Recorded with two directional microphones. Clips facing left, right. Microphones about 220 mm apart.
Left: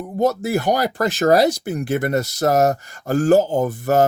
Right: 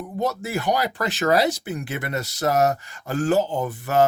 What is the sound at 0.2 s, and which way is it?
Speech, 40° left (ahead or behind).